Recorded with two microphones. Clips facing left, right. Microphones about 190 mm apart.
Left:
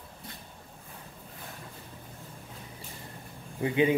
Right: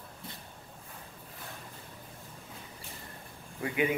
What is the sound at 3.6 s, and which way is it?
Speech, 25° left (ahead or behind).